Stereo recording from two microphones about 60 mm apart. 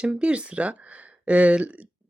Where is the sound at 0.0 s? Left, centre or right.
Centre.